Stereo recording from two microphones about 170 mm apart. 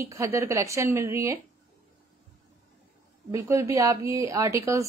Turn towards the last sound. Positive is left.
turn(degrees=-20)  # may be behind; listen again after turning